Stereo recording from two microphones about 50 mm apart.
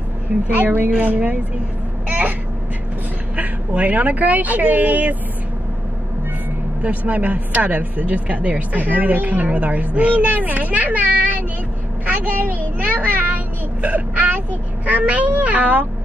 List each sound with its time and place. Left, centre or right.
0.6 s speech: right
2.0 s a sound: right
3.3 s a woman's voice: right
6.8 s speech: right
12.8 s vehicle: right
14.9 s speech: right